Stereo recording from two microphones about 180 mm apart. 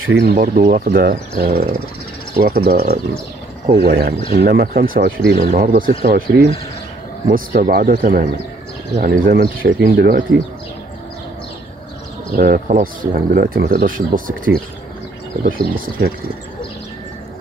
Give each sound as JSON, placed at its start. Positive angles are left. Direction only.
{"t": 0.0, "sound": "speech", "side_deg": -70}
{"t": 3.6, "sound": "speech", "side_deg": -45}
{"t": 12.3, "sound": "speech", "side_deg": -55}